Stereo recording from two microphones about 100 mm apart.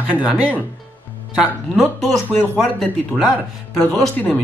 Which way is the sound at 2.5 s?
Centre (ahead or behind).